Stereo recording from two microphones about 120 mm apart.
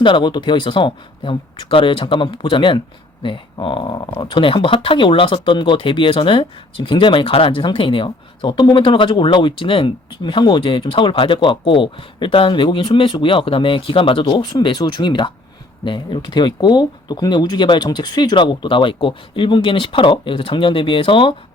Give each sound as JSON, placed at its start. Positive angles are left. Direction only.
{"t": 0.0, "sound": "speech", "side_deg": 40}